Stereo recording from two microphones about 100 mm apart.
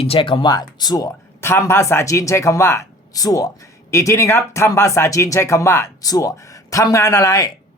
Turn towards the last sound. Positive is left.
turn(degrees=35)  # may be behind; listen again after turning